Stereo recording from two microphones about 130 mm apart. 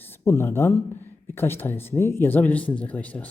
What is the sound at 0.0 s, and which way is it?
A man's voice, 20° left (ahead or behind).